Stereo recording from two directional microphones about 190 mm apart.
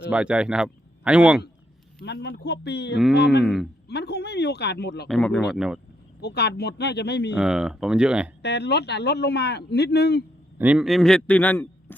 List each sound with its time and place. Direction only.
0.1 s a man's voice: 5° right (ahead or behind)
2.0 s speech: 60° left (ahead or behind)
3.4 s a man's voice: centre (ahead or behind)
3.8 s speech: 60° left (ahead or behind)
5.0 s a man's voice: 5° left (ahead or behind)
6.2 s speech: 60° left (ahead or behind)
7.3 s a man's voice: 5° right (ahead or behind)
8.4 s speech: 60° left (ahead or behind)
10.6 s a man's voice: 5° right (ahead or behind); by 11.9 s 10° left (ahead or behind)